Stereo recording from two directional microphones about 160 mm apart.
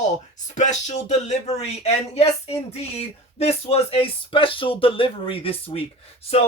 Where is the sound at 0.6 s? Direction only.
50° left (ahead or behind).